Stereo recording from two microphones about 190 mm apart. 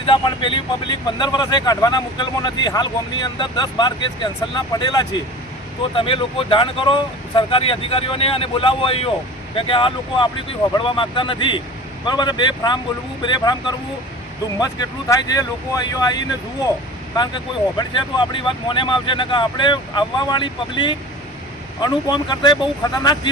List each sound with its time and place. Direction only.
0.0 s speech: 25° left (ahead or behind)
17.2 s speech: 20° left (ahead or behind)